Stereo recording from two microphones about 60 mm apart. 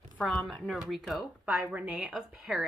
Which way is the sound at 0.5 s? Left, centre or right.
Centre.